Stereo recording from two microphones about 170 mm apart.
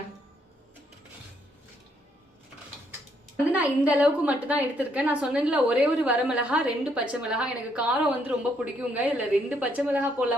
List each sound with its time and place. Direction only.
3.5 s a woman's voice: 10° right (ahead or behind)